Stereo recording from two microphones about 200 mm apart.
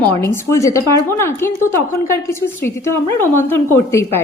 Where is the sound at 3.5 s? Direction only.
15° left (ahead or behind).